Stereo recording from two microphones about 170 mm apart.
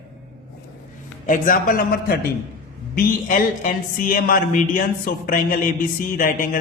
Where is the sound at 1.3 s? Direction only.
55° left (ahead or behind).